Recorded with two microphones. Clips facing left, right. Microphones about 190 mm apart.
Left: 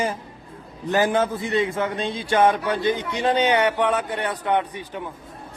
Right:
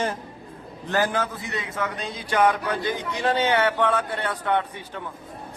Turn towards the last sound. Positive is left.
turn(degrees=15)  # may be behind; listen again after turning